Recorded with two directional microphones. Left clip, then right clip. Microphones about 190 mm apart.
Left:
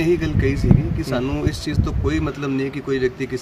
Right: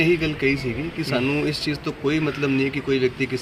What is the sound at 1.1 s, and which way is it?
Speech, 15° left (ahead or behind).